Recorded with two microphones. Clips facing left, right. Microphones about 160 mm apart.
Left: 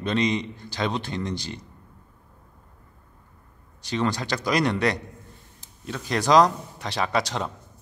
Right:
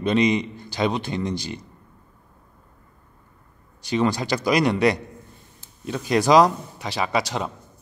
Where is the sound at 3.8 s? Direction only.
10° right (ahead or behind).